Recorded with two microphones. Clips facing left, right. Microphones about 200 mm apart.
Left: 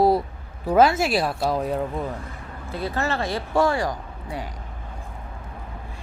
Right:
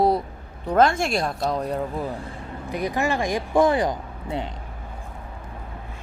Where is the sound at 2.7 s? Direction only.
15° right (ahead or behind).